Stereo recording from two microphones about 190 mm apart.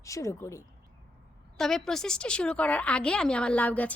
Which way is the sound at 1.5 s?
Centre (ahead or behind).